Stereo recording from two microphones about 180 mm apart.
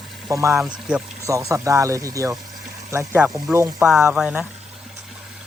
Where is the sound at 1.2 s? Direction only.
15° right (ahead or behind).